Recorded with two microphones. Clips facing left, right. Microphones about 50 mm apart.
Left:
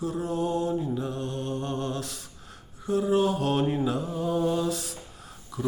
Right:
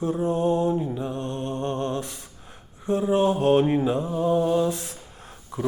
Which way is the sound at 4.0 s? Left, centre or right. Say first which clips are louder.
Right 5 dB; right.